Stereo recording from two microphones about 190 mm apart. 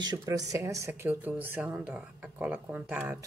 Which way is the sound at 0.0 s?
20° right (ahead or behind).